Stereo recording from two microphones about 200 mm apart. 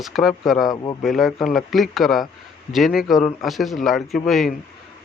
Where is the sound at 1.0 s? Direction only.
Centre (ahead or behind).